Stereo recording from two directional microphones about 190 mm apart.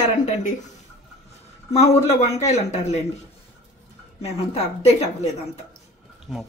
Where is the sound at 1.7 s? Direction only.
35° left (ahead or behind).